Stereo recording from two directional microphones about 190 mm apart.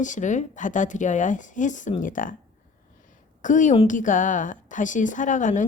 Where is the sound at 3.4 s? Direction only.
40° left (ahead or behind).